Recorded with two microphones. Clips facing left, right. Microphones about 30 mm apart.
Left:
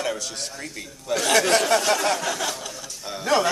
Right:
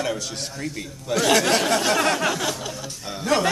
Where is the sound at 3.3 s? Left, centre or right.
Centre.